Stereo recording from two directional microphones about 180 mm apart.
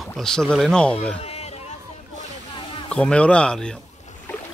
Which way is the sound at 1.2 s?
35° left (ahead or behind).